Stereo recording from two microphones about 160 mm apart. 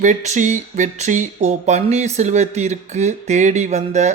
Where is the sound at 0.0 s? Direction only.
50° right (ahead or behind).